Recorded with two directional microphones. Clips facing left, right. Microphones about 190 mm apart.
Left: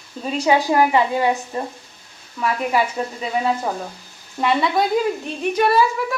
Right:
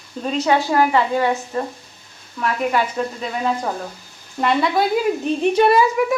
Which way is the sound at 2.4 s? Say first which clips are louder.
Even; 5° left (ahead or behind).